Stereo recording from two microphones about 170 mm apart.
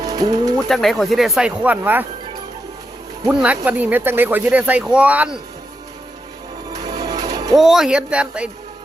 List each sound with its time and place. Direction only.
0.0 s speech: 20° right (ahead or behind)
0.7 s speech: centre (ahead or behind)
3.2 s speech: 10° right (ahead or behind)
6.7 s music: 20° right (ahead or behind)
7.6 s speech: centre (ahead or behind)